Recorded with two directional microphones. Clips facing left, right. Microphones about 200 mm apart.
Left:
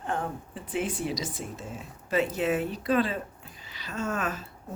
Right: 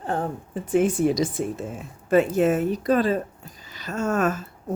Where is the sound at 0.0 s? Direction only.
35° right (ahead or behind).